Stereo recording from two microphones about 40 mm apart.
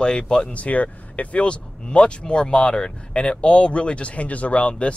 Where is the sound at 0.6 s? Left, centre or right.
Left.